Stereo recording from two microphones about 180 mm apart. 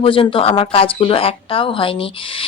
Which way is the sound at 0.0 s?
30° left (ahead or behind).